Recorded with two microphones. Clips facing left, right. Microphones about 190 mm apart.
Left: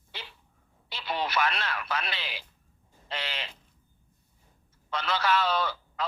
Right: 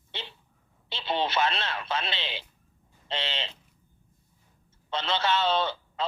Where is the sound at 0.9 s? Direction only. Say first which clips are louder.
Right 2 dB; 25° right (ahead or behind).